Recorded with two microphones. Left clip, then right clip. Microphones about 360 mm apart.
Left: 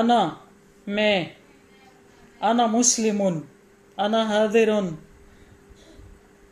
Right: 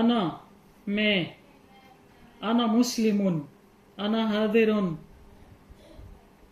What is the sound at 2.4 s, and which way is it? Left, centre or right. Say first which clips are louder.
A man's voice: left 6 dB; left.